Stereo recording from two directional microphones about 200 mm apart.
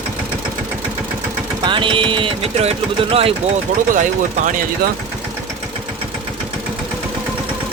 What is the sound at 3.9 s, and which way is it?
Speech, 40° right (ahead or behind).